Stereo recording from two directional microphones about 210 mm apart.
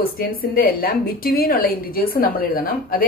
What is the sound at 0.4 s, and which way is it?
A woman's voice, 45° left (ahead or behind).